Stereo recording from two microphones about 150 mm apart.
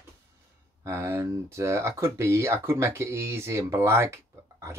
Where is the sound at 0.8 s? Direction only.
15° right (ahead or behind).